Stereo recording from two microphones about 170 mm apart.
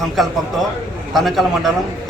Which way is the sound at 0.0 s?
Centre (ahead or behind).